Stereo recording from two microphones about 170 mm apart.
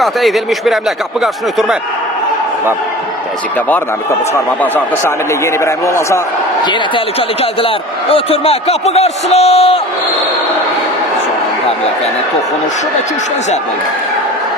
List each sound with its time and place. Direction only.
0.0 s speech: centre (ahead or behind)
4.6 s speech: 10° left (ahead or behind)
6.7 s speech: 30° left (ahead or behind)